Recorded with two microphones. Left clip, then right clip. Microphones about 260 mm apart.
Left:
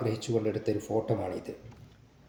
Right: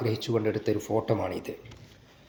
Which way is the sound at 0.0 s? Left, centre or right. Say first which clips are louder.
Right 2 dB; right.